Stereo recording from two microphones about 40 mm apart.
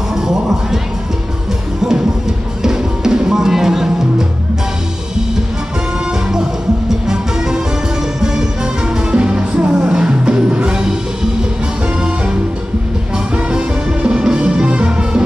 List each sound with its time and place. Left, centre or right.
0.1 s speech: centre
2.6 s music: centre
6.9 s music: centre
9.1 s music: right
13.5 s music: right